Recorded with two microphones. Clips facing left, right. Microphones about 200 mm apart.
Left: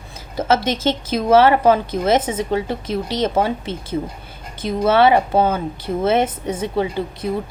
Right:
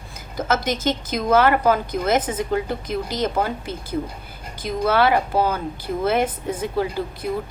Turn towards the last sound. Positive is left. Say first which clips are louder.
# left 2 dB
turn(degrees=25)  # may be behind; listen again after turning